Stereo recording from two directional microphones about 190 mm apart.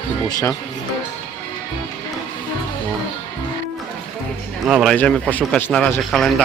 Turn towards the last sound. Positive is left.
turn(degrees=5)  # may be behind; listen again after turning